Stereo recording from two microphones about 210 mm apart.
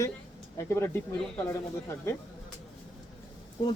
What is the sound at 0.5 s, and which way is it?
Speech, 10° left (ahead or behind).